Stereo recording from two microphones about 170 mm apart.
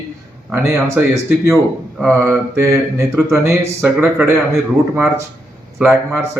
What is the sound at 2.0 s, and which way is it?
Mantra, 15° right (ahead or behind).